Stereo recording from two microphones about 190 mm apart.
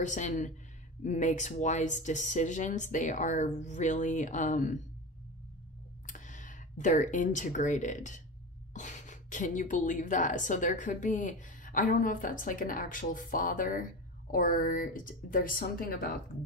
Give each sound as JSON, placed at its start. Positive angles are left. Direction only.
{"t": 0.0, "sound": "speech", "side_deg": 40}
{"t": 6.0, "sound": "speech", "side_deg": 40}